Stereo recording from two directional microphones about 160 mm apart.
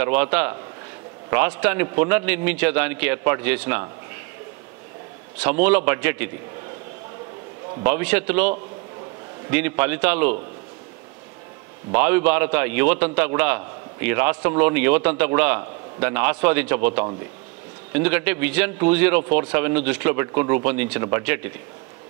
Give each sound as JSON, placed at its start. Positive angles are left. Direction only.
{"t": 0.0, "sound": "a man's voice", "side_deg": -10}
{"t": 5.4, "sound": "a man's voice", "side_deg": -10}
{"t": 7.8, "sound": "a man's voice", "side_deg": -10}
{"t": 11.9, "sound": "a man's voice", "side_deg": -10}